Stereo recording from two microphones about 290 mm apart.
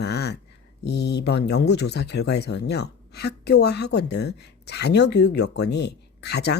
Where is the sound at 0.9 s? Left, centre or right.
Left.